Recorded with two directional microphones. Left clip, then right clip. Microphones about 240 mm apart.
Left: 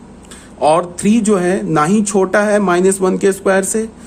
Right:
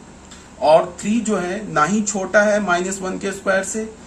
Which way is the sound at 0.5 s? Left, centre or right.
Left.